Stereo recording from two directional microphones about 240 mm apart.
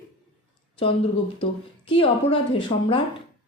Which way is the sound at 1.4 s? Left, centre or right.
Left.